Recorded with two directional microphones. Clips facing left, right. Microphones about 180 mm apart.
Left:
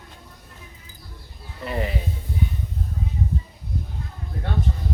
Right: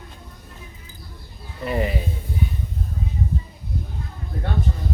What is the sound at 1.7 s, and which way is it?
Speech, 5° right (ahead or behind).